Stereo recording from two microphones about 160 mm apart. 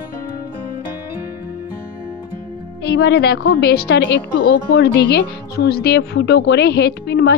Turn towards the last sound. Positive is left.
turn(degrees=90)